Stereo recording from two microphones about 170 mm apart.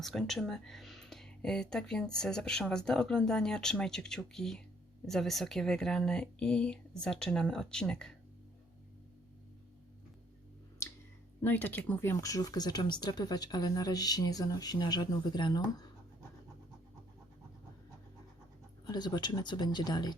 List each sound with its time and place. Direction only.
0.0 s speech: centre (ahead or behind)
11.4 s speech: 10° left (ahead or behind)
18.9 s speech: 25° left (ahead or behind)